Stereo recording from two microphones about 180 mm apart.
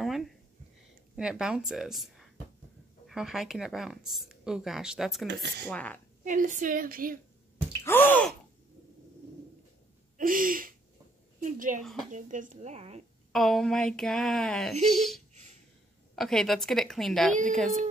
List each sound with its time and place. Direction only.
0.0 s a sound: centre (ahead or behind)
1.1 s speech: 5° right (ahead or behind)
5.2 s speech: 65° right (ahead or behind)
5.7 s a woman's voice: 10° left (ahead or behind)
6.2 s a woman's voice: 45° right (ahead or behind)
7.8 s gasp: 10° left (ahead or behind)
10.1 s a sound: 50° right (ahead or behind)
11.5 s speech: 50° right (ahead or behind)
11.8 s speech: centre (ahead or behind)
12.1 s speech: 45° right (ahead or behind)
13.3 s speech: centre (ahead or behind)